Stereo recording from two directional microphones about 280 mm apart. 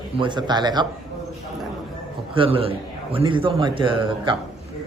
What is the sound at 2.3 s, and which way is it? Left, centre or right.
A man's voice, centre.